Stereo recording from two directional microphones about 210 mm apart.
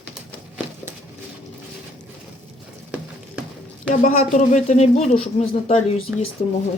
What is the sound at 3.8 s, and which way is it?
Speech, 30° left (ahead or behind).